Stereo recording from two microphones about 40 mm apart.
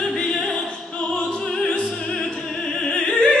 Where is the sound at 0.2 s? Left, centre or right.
Left.